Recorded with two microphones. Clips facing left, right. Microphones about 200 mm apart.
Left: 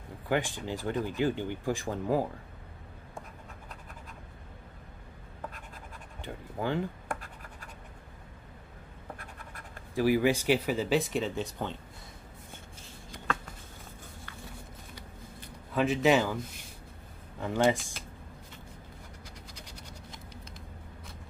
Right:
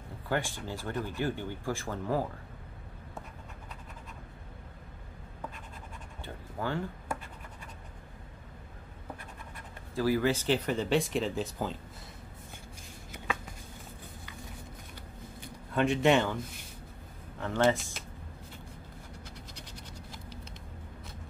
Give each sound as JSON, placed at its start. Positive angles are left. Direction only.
{"t": 0.3, "sound": "speech", "side_deg": 15}
{"t": 6.2, "sound": "speech", "side_deg": 15}
{"t": 9.9, "sound": "speech", "side_deg": 15}
{"t": 15.7, "sound": "speech", "side_deg": 0}